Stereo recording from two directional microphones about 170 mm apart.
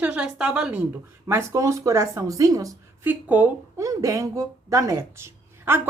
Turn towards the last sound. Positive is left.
turn(degrees=-15)  # may be behind; listen again after turning